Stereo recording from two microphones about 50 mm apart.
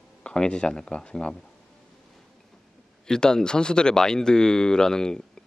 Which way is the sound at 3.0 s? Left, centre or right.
Centre.